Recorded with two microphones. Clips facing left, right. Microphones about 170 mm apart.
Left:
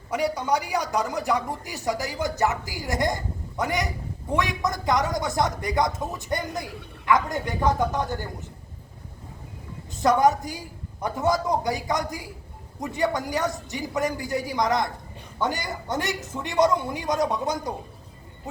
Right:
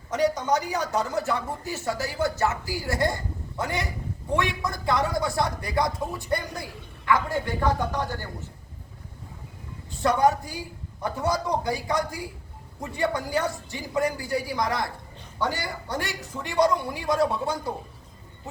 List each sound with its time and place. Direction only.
0.1 s a woman's voice: 10° left (ahead or behind)
10.2 s a man's voice: 20° left (ahead or behind)